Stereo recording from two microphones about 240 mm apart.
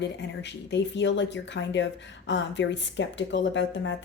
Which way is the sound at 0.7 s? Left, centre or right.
Left.